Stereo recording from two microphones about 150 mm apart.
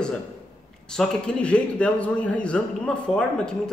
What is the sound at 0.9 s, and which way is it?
A man's voice, 5° left (ahead or behind).